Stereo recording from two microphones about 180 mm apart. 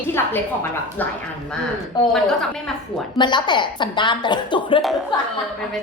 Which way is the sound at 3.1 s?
25° left (ahead or behind).